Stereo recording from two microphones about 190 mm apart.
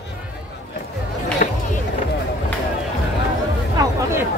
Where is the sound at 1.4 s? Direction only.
45° left (ahead or behind).